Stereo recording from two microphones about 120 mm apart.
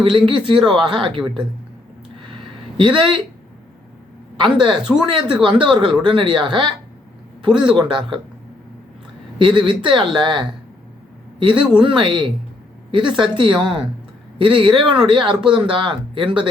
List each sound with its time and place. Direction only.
0.3 s speech: 45° right (ahead or behind)
2.2 s a sound: 45° right (ahead or behind)
4.4 s speech: 40° right (ahead or behind)
9.4 s speech: 45° right (ahead or behind)
11.8 s speech: 45° right (ahead or behind)